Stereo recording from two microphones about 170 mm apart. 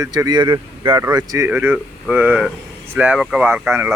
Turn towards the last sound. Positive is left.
turn(degrees=-10)  # may be behind; listen again after turning